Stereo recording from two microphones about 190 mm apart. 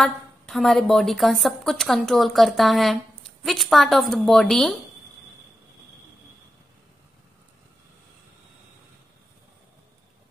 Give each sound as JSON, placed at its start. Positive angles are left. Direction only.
{"t": 0.0, "sound": "a woman's voice", "side_deg": 0}